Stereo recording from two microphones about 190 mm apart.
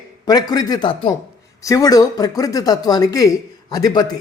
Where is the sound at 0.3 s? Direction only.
20° left (ahead or behind).